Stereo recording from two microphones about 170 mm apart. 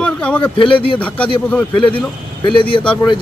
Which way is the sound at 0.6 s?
30° left (ahead or behind).